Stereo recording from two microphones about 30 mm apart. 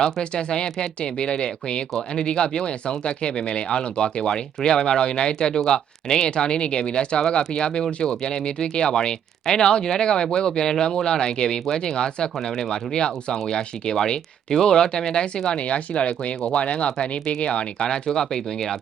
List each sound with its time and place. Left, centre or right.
0.0 s speech: left
15.5 s speech: left
18.2 s speech: centre